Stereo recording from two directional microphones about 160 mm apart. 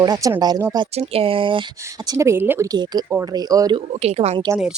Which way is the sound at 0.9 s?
35° right (ahead or behind).